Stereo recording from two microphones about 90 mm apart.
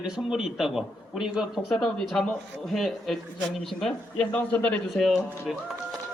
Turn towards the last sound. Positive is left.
turn(degrees=0)  # may be behind; listen again after turning